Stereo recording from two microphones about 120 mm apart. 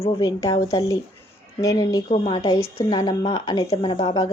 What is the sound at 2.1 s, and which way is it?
Speech, 50° left (ahead or behind).